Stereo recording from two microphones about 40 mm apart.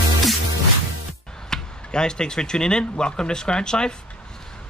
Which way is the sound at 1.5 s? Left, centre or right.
Centre.